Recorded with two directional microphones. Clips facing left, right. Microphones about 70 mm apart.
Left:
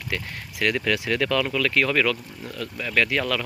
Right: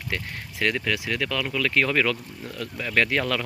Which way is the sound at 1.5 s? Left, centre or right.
Right.